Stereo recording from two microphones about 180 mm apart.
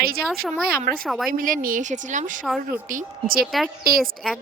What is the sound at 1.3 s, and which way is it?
A woman's voice, 50° right (ahead or behind).